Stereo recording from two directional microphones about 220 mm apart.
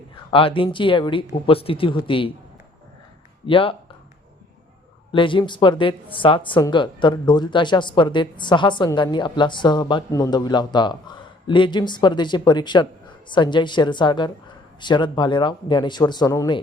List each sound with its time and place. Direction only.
0.3 s speech: 25° left (ahead or behind)
3.4 s speech: 25° left (ahead or behind)
5.1 s speech: 20° left (ahead or behind)